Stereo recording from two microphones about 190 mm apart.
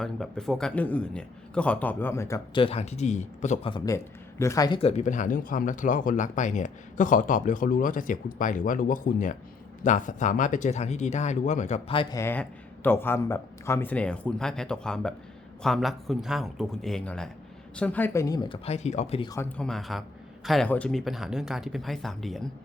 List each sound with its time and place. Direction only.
0.0 s speech: centre (ahead or behind); by 3.7 s 40° left (ahead or behind)
3.7 s speech: 20° left (ahead or behind)
12.1 s a man's voice: 10° left (ahead or behind); by 19.3 s 35° left (ahead or behind)
19.3 s a man's voice: 10° left (ahead or behind)